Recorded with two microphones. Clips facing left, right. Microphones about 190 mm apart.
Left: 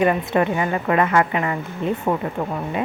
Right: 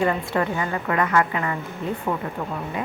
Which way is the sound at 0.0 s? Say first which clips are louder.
Left 4 dB; 20° left (ahead or behind).